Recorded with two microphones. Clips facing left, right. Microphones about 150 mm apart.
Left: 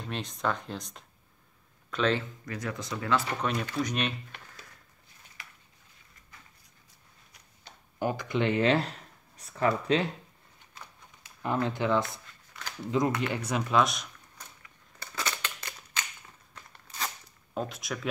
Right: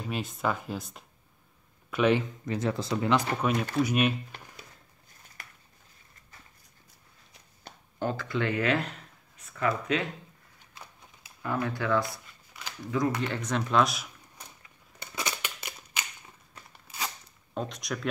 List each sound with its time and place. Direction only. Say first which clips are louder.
0.0 s speech: right 1 dB; 5° right (ahead or behind); by 3.1 s 30° right (ahead or behind)
3.1 s speech: right 2 dB; 10° right (ahead or behind)
5.4 s a sound: right 1 dB; 45° right (ahead or behind)
8.0 s speech: left 1 dB; 15° left (ahead or behind); by 10.0 s 30° left (ahead or behind)
11.4 s speech: left 2 dB; 20° left (ahead or behind)
13.2 s speech: even; 10° left (ahead or behind)
15.0 s scissors: even; 15° right (ahead or behind)
16.7 s crunch: even; 5° right (ahead or behind)
17.6 s speech: even; 5° left (ahead or behind)